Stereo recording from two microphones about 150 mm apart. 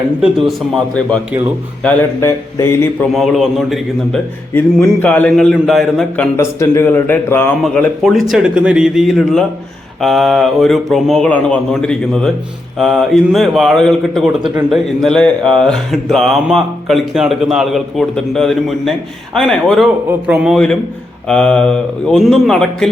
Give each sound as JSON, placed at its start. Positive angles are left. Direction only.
{"t": 0.2, "sound": "speech", "side_deg": 0}
{"t": 3.1, "sound": "speech", "side_deg": 0}
{"t": 6.3, "sound": "speech", "side_deg": 20}
{"t": 21.2, "sound": "speech", "side_deg": 5}